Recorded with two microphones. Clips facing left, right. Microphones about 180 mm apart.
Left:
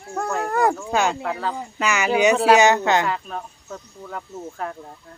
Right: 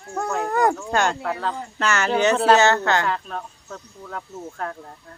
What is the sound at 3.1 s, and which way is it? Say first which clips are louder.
Speech: even; 5° left (ahead or behind).